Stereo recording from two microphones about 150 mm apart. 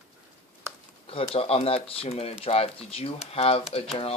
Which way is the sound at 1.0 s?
40° left (ahead or behind).